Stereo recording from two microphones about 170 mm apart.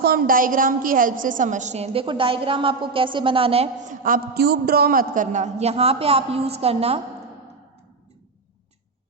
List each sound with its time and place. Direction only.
0.0 s a woman's voice: 60° right (ahead or behind); by 3.7 s 35° right (ahead or behind)
4.0 s a woman's voice: 60° right (ahead or behind); by 7.0 s 35° right (ahead or behind)